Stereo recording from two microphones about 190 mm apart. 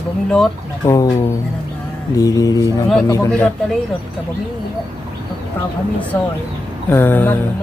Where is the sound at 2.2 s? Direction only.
20° left (ahead or behind).